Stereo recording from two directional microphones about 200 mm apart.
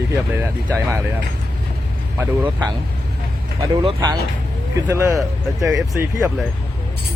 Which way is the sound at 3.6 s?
20° right (ahead or behind).